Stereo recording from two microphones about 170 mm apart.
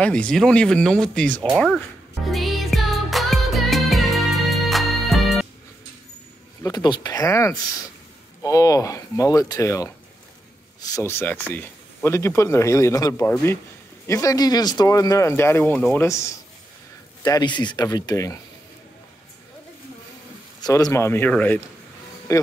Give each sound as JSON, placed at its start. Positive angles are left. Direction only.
{"t": 0.0, "sound": "speech", "side_deg": 5}
{"t": 2.2, "sound": "music", "side_deg": 0}
{"t": 6.6, "sound": "a man's voice", "side_deg": 25}
{"t": 20.6, "sound": "a man's voice", "side_deg": 20}